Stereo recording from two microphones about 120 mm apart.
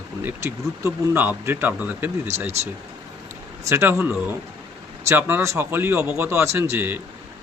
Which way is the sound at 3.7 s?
20° right (ahead or behind).